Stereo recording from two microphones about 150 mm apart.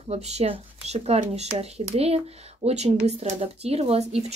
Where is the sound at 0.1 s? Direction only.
45° right (ahead or behind).